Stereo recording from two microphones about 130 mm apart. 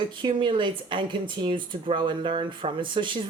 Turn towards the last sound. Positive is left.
turn(degrees=-40)  # may be behind; listen again after turning